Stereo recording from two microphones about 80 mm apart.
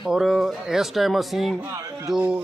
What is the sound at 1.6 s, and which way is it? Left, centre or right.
Speech, right.